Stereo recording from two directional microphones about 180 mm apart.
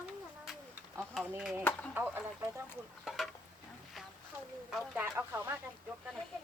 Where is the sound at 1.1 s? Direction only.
5° right (ahead or behind).